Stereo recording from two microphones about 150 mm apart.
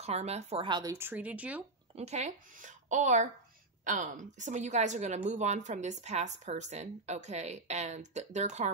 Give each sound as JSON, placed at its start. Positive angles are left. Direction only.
{"t": 0.0, "sound": "a woman's voice", "side_deg": -45}
{"t": 0.7, "sound": "speech", "side_deg": -30}
{"t": 0.9, "sound": "speech", "side_deg": -10}
{"t": 2.0, "sound": "a woman's voice", "side_deg": -45}